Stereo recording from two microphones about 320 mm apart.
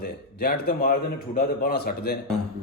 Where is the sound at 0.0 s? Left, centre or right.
Left.